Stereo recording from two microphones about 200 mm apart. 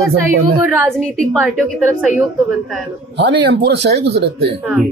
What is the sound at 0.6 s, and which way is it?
Speech, 5° right (ahead or behind).